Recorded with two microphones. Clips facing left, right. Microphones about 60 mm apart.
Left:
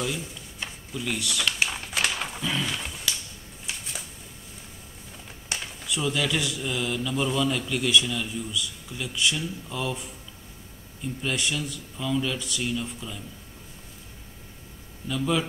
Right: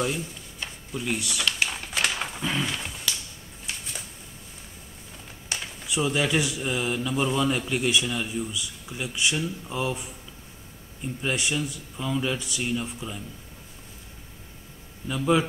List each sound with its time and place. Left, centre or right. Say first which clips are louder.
1.0 s speech: even; centre
1.4 s a sound: left 2 dB; centre
5.9 s speech: right 2 dB; centre
15.0 s speech: right 3 dB; right